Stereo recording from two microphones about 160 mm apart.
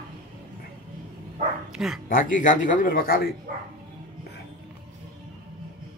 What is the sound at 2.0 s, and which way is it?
A man's voice, 60° left (ahead or behind).